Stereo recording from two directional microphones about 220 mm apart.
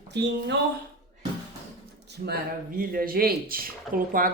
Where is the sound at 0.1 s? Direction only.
50° right (ahead or behind).